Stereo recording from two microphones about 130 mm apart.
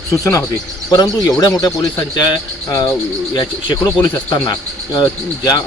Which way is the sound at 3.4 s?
35° left (ahead or behind).